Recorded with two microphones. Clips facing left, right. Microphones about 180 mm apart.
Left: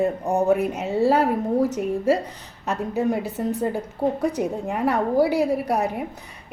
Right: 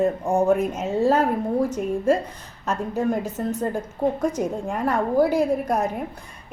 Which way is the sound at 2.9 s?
15° left (ahead or behind).